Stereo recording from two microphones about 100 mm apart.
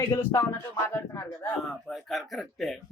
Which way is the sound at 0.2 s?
30° left (ahead or behind).